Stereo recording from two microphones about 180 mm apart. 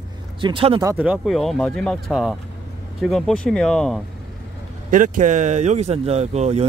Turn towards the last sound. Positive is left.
turn(degrees=-35)  # may be behind; listen again after turning